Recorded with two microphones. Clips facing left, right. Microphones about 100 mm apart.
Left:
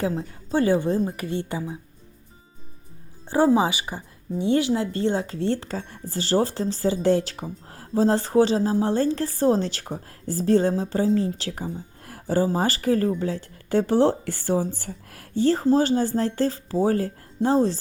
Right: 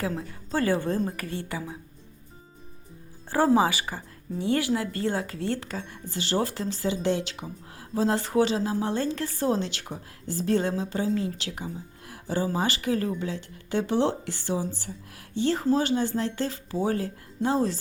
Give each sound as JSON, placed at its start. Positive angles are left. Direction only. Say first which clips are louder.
{"t": 0.0, "sound": "a woman's voice", "louder": "left 4 dB", "side_deg": 20}
{"t": 3.2, "sound": "a woman's voice", "louder": "left 2 dB", "side_deg": 20}